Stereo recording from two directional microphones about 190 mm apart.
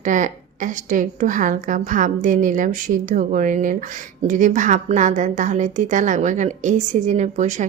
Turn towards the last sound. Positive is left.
turn(degrees=-40)  # may be behind; listen again after turning